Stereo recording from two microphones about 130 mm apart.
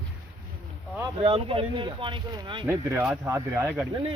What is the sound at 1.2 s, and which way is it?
Speech, 45° right (ahead or behind).